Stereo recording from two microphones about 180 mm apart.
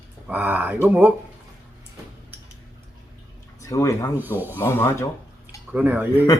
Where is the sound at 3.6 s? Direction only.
15° left (ahead or behind).